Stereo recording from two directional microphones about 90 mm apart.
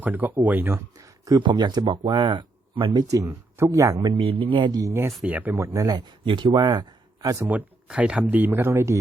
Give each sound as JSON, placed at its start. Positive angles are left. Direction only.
{"t": 0.0, "sound": "speech", "side_deg": -20}
{"t": 0.7, "sound": "a sound", "side_deg": -40}
{"t": 1.4, "sound": "speech", "side_deg": -60}
{"t": 2.9, "sound": "speech", "side_deg": -40}
{"t": 4.1, "sound": "speech", "side_deg": -70}
{"t": 4.9, "sound": "speech", "side_deg": -35}
{"t": 5.2, "sound": "speech", "side_deg": -20}
{"t": 5.5, "sound": "speech", "side_deg": -40}
{"t": 6.2, "sound": "speech", "side_deg": -60}
{"t": 7.9, "sound": "speech", "side_deg": -10}